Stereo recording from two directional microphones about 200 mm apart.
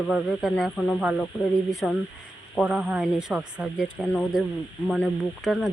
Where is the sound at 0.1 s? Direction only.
Centre (ahead or behind).